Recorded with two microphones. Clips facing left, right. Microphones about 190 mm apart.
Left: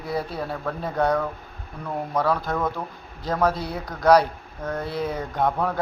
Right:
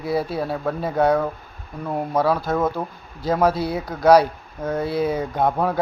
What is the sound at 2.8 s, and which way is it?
Speech, 25° right (ahead or behind).